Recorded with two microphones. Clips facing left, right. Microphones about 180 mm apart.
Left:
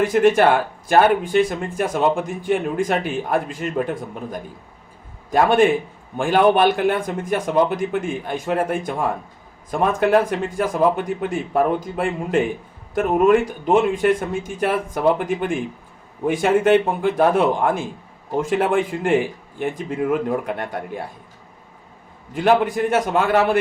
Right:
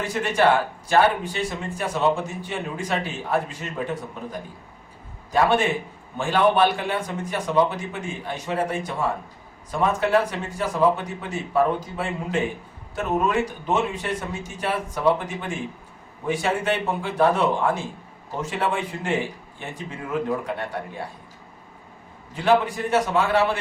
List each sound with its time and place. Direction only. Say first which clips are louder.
0.1 s a man's voice: left 1 dB; 55° left (ahead or behind)
22.4 s speech: left 3 dB; 50° left (ahead or behind)